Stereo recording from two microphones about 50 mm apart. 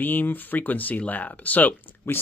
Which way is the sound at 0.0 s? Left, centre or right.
Left.